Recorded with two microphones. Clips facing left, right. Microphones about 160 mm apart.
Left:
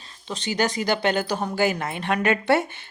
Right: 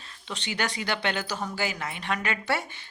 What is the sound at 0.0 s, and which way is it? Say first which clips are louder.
Speech: left 5 dB; 35° left (ahead or behind).